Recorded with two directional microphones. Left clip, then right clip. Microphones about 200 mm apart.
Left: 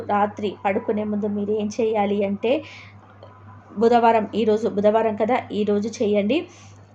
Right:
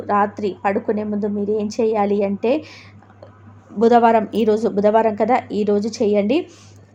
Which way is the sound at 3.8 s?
25° right (ahead or behind).